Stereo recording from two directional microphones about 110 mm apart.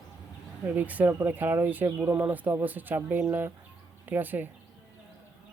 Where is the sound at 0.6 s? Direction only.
15° right (ahead or behind).